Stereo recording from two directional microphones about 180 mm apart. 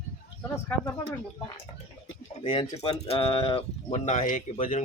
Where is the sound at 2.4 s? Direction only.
30° left (ahead or behind).